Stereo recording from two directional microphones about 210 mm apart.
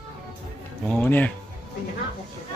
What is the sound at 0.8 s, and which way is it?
Speech, 10° left (ahead or behind).